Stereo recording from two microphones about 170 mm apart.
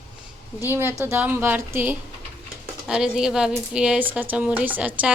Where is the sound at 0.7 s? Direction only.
15° right (ahead or behind).